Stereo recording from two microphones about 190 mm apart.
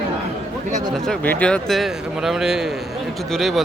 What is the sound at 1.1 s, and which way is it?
Speech, 5° left (ahead or behind).